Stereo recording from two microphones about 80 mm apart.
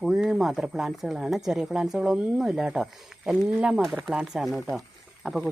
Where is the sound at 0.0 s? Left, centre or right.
Centre.